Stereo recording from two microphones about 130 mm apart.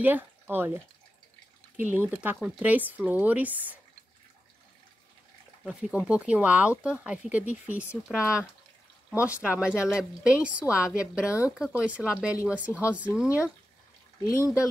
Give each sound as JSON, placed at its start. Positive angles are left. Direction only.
{"t": 0.0, "sound": "speech", "side_deg": -15}
{"t": 5.7, "sound": "speech", "side_deg": -5}
{"t": 7.9, "sound": "speech", "side_deg": 20}
{"t": 9.2, "sound": "speech", "side_deg": -10}
{"t": 14.2, "sound": "speech", "side_deg": 25}